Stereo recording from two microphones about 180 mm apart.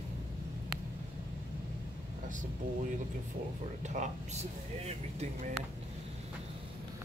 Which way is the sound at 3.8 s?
40° right (ahead or behind).